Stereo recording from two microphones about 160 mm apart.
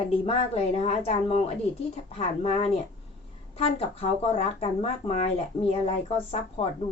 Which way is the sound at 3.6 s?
35° left (ahead or behind).